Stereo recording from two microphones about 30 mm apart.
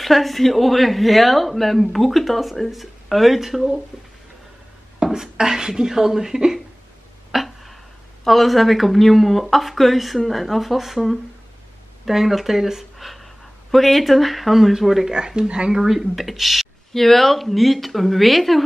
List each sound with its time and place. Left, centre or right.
0.0 s speech: centre
5.0 s speech: centre
7.3 s a sound: centre
8.2 s speech: centre
13.0 s speech: centre
15.1 s speech: right
15.7 s speech: centre
16.9 s speech: centre